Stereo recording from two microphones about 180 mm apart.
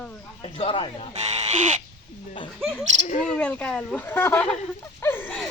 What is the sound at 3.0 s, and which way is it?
Speech, 45° left (ahead or behind).